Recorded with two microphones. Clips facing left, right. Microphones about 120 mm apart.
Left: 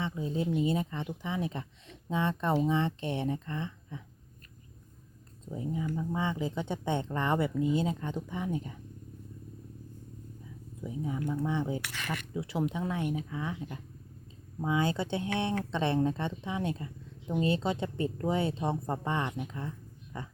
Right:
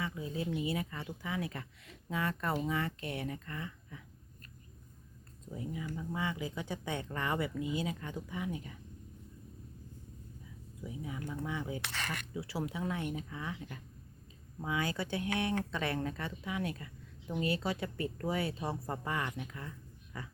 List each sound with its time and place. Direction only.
0.0 s speech: 25° left (ahead or behind)
5.5 s speech: 25° left (ahead or behind)
10.8 s speech: 30° left (ahead or behind)
11.8 s speech: 30° right (ahead or behind)
12.3 s speech: 25° left (ahead or behind)